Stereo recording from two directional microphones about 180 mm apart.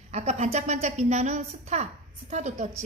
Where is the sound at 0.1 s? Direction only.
40° right (ahead or behind).